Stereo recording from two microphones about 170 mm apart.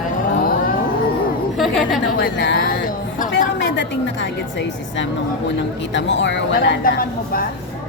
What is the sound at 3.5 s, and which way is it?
A woman's voice, 90° left.